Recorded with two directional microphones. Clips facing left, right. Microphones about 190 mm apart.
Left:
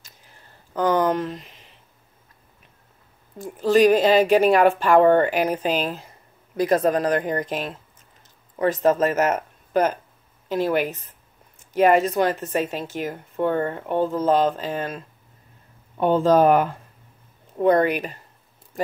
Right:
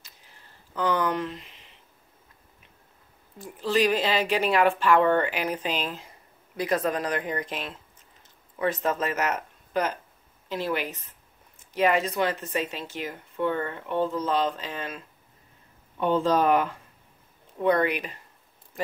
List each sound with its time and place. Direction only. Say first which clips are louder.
0.7 s speech: left 6 dB; 45° left (ahead or behind)
3.3 s speech: left 7 dB; 45° left (ahead or behind)